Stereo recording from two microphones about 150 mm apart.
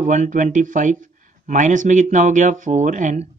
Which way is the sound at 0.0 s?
55° right (ahead or behind).